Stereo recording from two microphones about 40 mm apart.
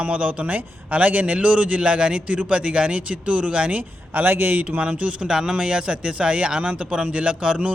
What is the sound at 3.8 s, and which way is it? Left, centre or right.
Speech, right.